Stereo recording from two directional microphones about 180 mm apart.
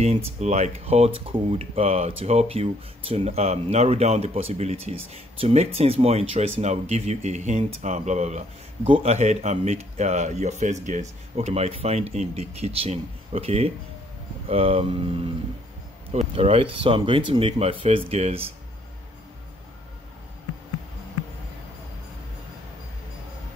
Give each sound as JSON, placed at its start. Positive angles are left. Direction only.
{"t": 0.0, "sound": "speech", "side_deg": -40}